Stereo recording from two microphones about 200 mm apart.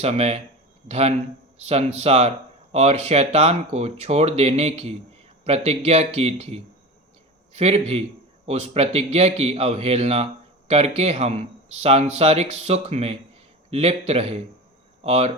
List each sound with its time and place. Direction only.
0.0 s speech: 30° right (ahead or behind)